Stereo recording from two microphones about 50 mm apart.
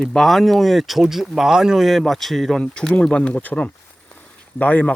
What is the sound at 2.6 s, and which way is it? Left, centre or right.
Speech, left.